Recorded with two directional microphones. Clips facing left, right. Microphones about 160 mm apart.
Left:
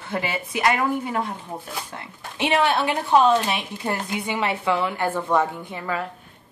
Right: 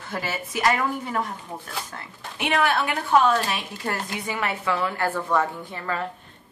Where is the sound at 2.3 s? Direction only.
25° left (ahead or behind); by 6.1 s 10° left (ahead or behind).